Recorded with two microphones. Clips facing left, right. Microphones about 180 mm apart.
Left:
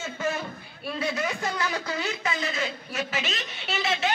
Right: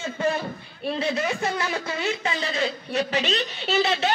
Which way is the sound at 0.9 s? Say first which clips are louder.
Right 3 dB; 30° right (ahead or behind).